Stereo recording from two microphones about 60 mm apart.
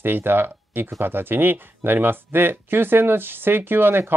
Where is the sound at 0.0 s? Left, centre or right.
Right.